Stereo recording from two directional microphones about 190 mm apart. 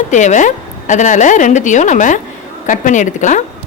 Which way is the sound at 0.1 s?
40° left (ahead or behind).